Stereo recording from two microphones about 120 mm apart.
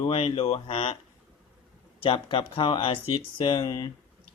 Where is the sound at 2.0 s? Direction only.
45° left (ahead or behind).